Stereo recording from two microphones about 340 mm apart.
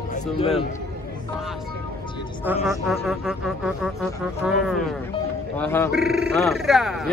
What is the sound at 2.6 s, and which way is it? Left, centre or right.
Speech, centre.